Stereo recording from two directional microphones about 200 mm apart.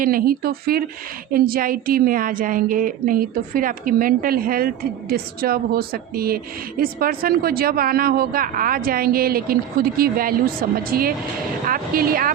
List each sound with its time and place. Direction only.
0.0 s a woman's voice: 45° right (ahead or behind)